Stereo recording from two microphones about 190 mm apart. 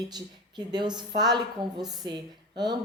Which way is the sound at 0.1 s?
25° right (ahead or behind).